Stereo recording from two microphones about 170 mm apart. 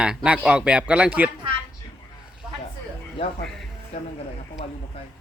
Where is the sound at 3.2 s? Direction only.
30° left (ahead or behind).